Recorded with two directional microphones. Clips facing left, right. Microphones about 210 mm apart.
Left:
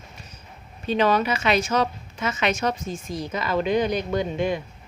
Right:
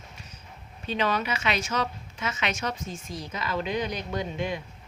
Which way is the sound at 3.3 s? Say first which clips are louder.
Left 7 dB; 55° left (ahead or behind).